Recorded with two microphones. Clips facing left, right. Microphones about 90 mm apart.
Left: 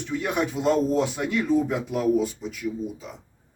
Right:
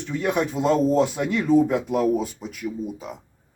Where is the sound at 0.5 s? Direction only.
40° right (ahead or behind).